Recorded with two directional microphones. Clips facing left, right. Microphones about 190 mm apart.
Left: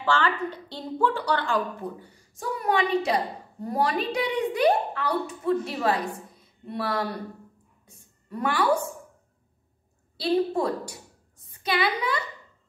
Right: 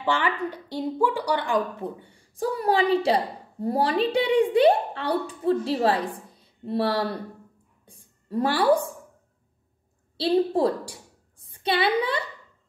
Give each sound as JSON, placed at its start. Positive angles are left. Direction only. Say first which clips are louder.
{"t": 0.0, "sound": "a woman's voice", "louder": "even", "side_deg": -15}
{"t": 7.8, "sound": "a sound", "louder": "right 1 dB", "side_deg": -30}
{"t": 10.1, "sound": "a woman's voice", "louder": "right 2 dB", "side_deg": -30}